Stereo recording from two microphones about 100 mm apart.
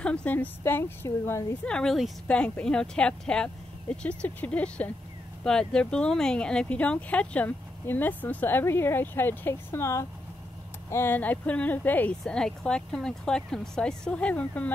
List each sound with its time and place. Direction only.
0.0 s a woman's voice: 10° left (ahead or behind)
1.6 s speech: 10° left (ahead or behind)
12.2 s speech: 5° left (ahead or behind)